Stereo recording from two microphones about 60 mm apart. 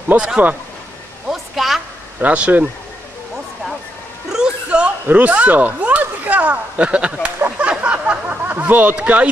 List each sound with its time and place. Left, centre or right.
0.1 s a man's voice: right
1.3 s a sound: centre
2.1 s speech: right
4.3 s music: centre
5.0 s speech: right
7.5 s a sound: centre